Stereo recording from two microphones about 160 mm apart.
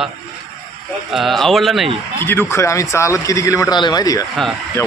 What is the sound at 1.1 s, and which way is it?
Speech, centre (ahead or behind).